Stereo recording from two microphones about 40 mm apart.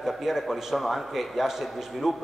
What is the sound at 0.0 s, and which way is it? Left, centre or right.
A man's voice, centre.